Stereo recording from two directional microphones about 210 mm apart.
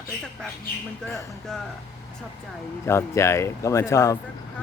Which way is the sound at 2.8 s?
15° left (ahead or behind).